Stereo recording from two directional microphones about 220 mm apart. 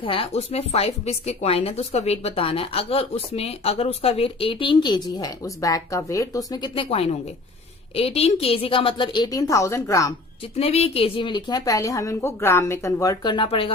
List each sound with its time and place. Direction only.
0.0 s a woman's voice: 25° left (ahead or behind)
10.6 s a woman's voice: 25° left (ahead or behind)